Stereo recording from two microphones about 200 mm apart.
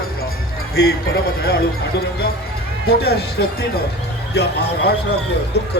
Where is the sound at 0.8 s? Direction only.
50° left (ahead or behind).